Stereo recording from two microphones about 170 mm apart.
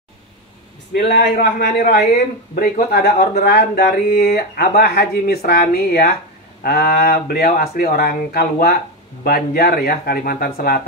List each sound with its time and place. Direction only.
1.0 s speech: 75° left (ahead or behind)